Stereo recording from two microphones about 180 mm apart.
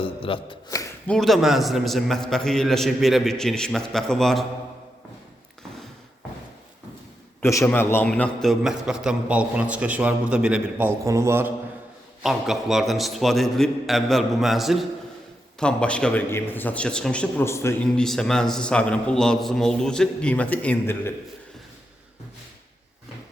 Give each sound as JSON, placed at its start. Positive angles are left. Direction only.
{"t": 0.0, "sound": "a sound", "side_deg": 30}
{"t": 1.0, "sound": "a man's voice", "side_deg": 5}
{"t": 7.4, "sound": "a man's voice", "side_deg": 15}
{"t": 12.2, "sound": "a man's voice", "side_deg": 0}